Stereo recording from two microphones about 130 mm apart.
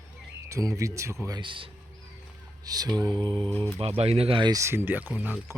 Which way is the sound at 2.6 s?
30° right (ahead or behind).